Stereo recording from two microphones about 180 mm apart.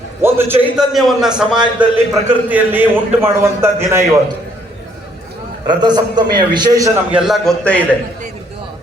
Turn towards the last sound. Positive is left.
turn(degrees=5)  # may be behind; listen again after turning